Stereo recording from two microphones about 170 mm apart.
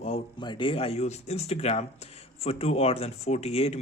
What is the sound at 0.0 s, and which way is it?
Speech, 30° left (ahead or behind).